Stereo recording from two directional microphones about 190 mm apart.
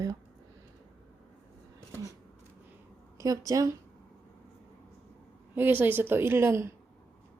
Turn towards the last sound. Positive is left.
turn(degrees=-15)  # may be behind; listen again after turning